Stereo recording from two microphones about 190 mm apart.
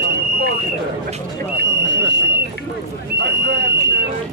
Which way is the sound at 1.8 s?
65° right (ahead or behind).